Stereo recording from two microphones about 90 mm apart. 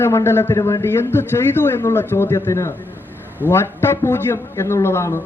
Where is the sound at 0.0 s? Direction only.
30° left (ahead or behind).